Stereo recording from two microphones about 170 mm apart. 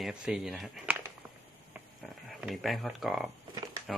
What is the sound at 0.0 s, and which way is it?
Speech, 5° right (ahead or behind).